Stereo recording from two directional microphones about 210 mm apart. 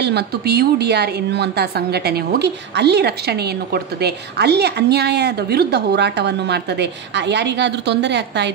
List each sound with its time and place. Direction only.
0.0 s a woman's voice: 50° right (ahead or behind)